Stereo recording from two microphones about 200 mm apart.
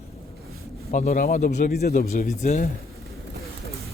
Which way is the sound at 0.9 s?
40° left (ahead or behind).